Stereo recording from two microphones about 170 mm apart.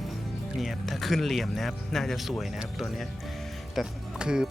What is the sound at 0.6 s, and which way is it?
Speech, centre (ahead or behind).